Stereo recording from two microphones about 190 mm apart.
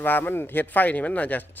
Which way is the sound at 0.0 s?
10° left (ahead or behind).